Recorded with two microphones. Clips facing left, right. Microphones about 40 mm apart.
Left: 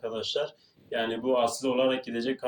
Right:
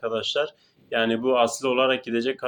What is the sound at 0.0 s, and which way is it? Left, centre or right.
Speech, right.